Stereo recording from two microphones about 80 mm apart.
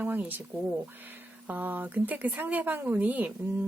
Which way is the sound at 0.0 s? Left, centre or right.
Right.